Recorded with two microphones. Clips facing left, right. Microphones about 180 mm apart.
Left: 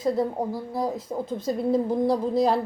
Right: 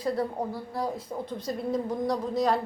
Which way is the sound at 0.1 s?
20° left (ahead or behind).